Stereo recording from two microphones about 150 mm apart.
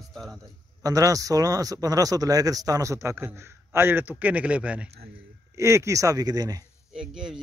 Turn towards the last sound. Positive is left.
turn(degrees=-5)  # may be behind; listen again after turning